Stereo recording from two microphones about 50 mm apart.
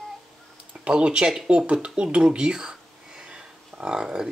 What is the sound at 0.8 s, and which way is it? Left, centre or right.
Speech, right.